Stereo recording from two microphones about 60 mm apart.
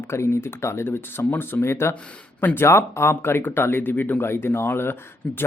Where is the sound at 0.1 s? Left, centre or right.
Left.